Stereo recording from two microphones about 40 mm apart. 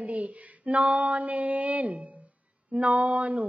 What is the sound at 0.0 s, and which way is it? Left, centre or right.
A woman's voice, right.